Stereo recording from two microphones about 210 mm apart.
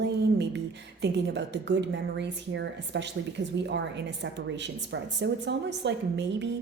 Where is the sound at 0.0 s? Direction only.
55° right (ahead or behind).